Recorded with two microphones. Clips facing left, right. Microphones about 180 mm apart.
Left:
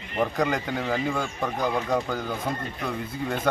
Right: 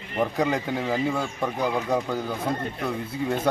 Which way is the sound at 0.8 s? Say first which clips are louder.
Right 1 dB; 5° right (ahead or behind).